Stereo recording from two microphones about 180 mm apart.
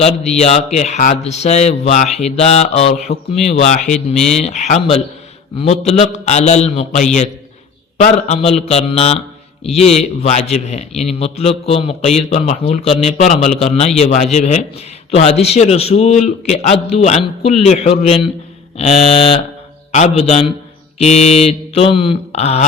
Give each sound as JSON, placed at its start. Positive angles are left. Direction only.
{"t": 0.0, "sound": "speech", "side_deg": 35}